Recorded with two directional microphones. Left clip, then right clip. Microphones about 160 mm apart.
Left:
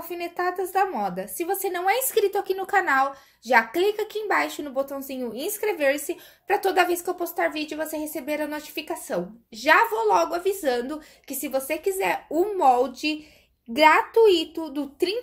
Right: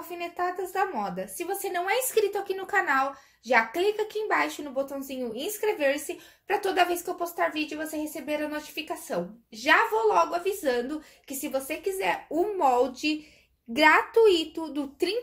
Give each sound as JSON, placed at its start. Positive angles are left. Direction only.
{"t": 0.1, "sound": "a woman's voice", "side_deg": 40}